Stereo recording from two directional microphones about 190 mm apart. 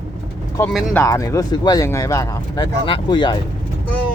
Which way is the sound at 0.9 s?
15° left (ahead or behind).